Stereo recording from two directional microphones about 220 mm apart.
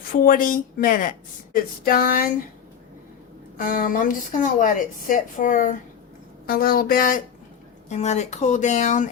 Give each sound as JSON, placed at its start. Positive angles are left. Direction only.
{"t": 0.1, "sound": "speech", "side_deg": 35}
{"t": 3.6, "sound": "speech", "side_deg": 40}